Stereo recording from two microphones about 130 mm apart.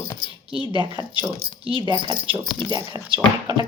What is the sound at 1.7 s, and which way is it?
Speech, 35° right (ahead or behind).